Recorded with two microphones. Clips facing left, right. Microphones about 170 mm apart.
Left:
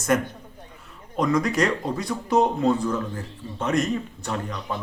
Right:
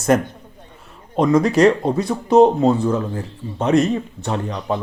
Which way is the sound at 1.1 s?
25° right (ahead or behind).